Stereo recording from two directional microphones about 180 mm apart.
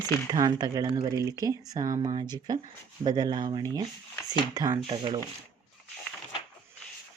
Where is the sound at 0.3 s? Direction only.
20° right (ahead or behind).